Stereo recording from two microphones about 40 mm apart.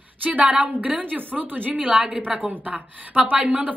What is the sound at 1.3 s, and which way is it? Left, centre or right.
Speech, right.